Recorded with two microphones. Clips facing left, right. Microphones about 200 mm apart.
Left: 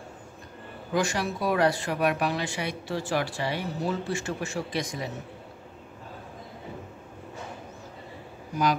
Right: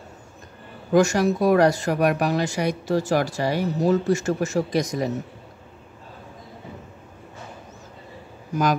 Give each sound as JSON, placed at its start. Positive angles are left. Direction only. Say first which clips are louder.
{"t": 0.9, "sound": "speech", "louder": "right 9 dB", "side_deg": -45}